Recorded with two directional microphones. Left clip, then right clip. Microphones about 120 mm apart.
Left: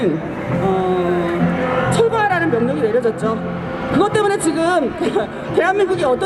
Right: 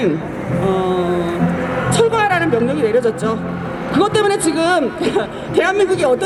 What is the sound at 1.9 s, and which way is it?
Music, centre (ahead or behind).